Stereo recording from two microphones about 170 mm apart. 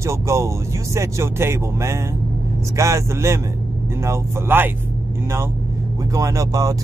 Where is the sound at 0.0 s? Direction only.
15° right (ahead or behind).